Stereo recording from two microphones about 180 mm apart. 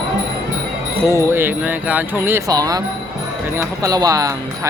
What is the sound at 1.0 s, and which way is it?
Speech, 15° right (ahead or behind).